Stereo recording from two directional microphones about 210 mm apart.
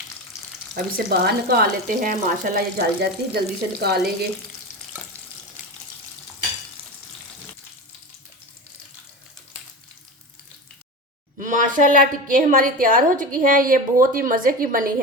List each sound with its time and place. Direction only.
0.9 s speech: 45° right (ahead or behind)
11.3 s a woman's voice: 40° right (ahead or behind)